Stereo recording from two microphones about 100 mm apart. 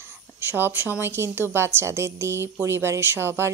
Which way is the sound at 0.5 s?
20° right (ahead or behind).